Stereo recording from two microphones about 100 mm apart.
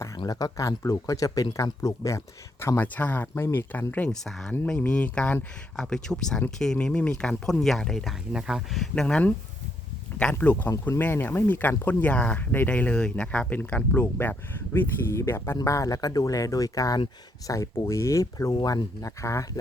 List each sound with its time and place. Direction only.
0.3 s speech: 40° left (ahead or behind); by 4.1 s 15° left (ahead or behind)
4.1 s speech: 5° left (ahead or behind)
8.3 s speech: 5° right (ahead or behind)
10.3 s speech: 15° left (ahead or behind)
18.5 s speech: 45° left (ahead or behind)